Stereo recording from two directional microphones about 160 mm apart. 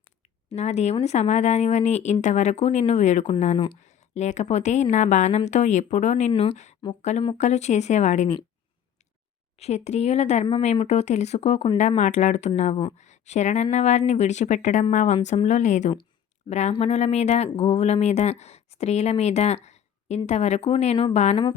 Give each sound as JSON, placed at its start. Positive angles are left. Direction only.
{"t": 0.5, "sound": "speech", "side_deg": 45}
{"t": 9.6, "sound": "speech", "side_deg": 45}